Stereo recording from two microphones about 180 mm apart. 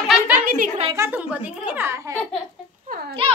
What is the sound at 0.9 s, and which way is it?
A child's voice, 10° right (ahead or behind).